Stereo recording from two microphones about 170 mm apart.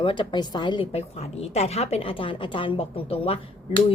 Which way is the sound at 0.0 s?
30° left (ahead or behind).